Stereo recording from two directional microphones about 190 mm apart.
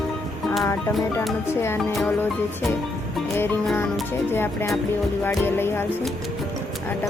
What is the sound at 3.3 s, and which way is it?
Music, 10° left (ahead or behind).